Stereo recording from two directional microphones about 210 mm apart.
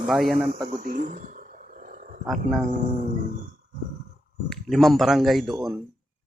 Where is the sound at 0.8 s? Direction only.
40° right (ahead or behind).